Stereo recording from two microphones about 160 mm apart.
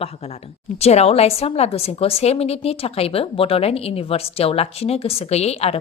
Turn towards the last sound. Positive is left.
turn(degrees=40)  # may be behind; listen again after turning